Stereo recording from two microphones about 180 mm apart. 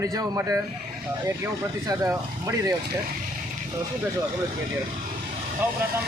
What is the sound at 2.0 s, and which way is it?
Speech, 20° right (ahead or behind).